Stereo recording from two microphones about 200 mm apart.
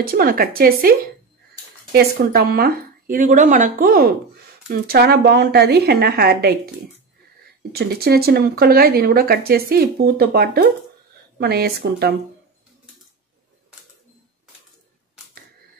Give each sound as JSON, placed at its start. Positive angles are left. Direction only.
{"t": 0.0, "sound": "speech", "side_deg": -50}
{"t": 7.7, "sound": "speech", "side_deg": -55}